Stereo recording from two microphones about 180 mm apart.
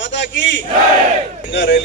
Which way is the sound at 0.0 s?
85° left.